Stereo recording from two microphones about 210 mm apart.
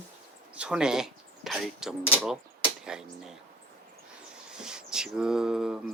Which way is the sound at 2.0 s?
5° left (ahead or behind).